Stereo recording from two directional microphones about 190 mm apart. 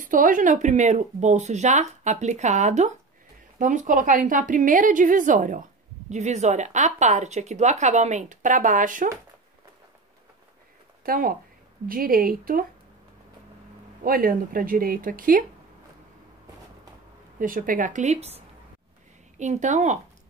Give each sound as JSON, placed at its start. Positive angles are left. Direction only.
{"t": 0.0, "sound": "a woman's voice", "side_deg": -45}
{"t": 11.1, "sound": "a woman's voice", "side_deg": -50}
{"t": 14.0, "sound": "a woman's voice", "side_deg": -50}
{"t": 17.4, "sound": "a woman's voice", "side_deg": -45}